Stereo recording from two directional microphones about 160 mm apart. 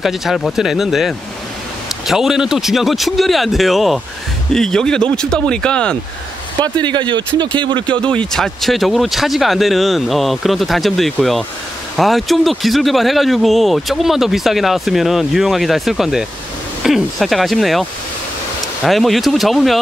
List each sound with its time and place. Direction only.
0.0 s speech: centre (ahead or behind)
6.6 s speech: 30° right (ahead or behind)
8.0 s speech: 5° left (ahead or behind)